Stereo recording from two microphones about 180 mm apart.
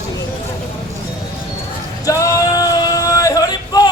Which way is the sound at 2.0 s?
15° left (ahead or behind).